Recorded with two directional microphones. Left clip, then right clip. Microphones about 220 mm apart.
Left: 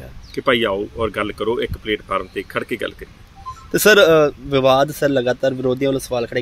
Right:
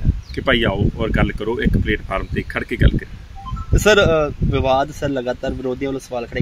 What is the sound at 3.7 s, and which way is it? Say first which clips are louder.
Speech: left 3 dB; 50° left (ahead or behind).